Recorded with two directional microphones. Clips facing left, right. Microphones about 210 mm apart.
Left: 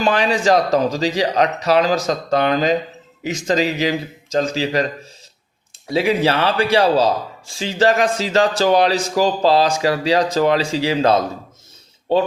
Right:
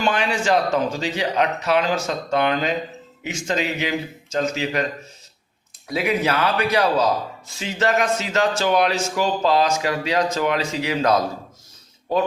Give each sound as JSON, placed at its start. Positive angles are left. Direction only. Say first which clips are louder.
{"t": 0.0, "sound": "a man's voice", "louder": "left 5 dB", "side_deg": 35}
{"t": 5.9, "sound": "a man's voice", "louder": "left 4 dB", "side_deg": 30}